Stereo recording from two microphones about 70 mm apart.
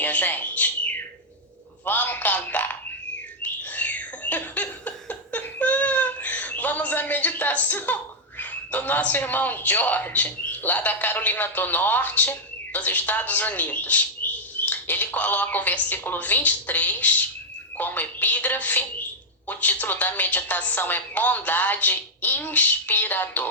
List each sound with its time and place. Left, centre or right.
0.0 s bird: left
1.8 s a man's voice: left
3.4 s bird: left
8.4 s a man's voice: left